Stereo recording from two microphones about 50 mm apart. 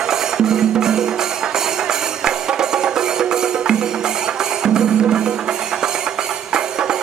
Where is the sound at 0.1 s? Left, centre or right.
Centre.